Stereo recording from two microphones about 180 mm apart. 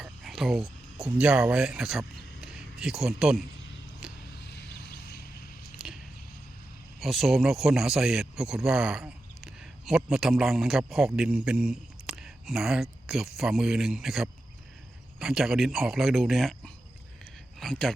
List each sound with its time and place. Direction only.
0.0 s speech: centre (ahead or behind)
4.0 s a sound: 5° right (ahead or behind)
4.5 s vehicle: 65° left (ahead or behind)
7.0 s speech: centre (ahead or behind)